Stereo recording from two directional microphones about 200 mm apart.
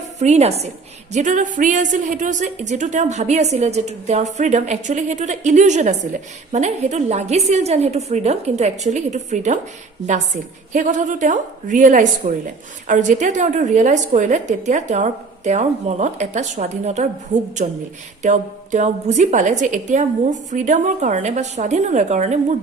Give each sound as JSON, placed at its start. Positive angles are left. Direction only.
{"t": 0.2, "sound": "a woman's voice", "side_deg": -35}
{"t": 10.7, "sound": "a woman's voice", "side_deg": -40}